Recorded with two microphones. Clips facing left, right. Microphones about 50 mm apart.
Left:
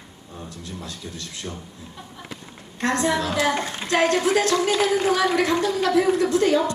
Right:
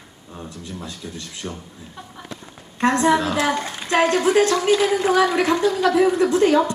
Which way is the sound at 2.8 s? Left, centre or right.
Right.